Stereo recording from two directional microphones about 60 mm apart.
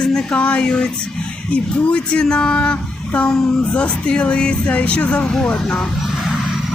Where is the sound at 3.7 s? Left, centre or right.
Centre.